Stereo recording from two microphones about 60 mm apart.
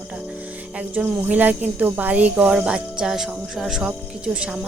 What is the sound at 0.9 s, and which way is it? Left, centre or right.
Speech, right.